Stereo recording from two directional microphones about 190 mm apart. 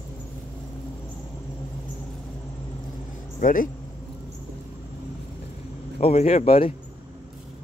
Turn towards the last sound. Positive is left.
turn(degrees=30)  # may be behind; listen again after turning